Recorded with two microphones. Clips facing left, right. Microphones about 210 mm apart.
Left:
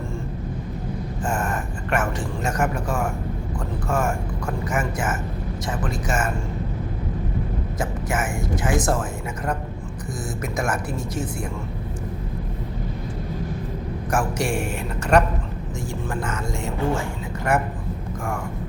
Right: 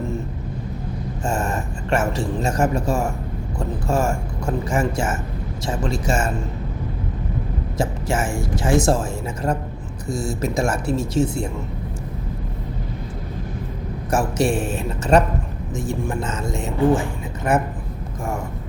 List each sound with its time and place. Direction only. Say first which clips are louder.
1.2 s speech: right 2 dB; 25° right (ahead or behind)
7.8 s speech: right 4 dB; 30° right (ahead or behind)
14.1 s speech: right 4 dB; 25° right (ahead or behind)